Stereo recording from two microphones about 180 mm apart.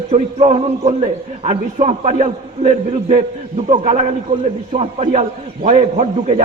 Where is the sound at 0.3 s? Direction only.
35° right (ahead or behind).